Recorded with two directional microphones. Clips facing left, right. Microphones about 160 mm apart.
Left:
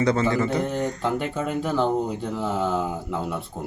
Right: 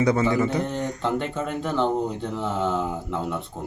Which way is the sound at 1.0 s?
10° left (ahead or behind).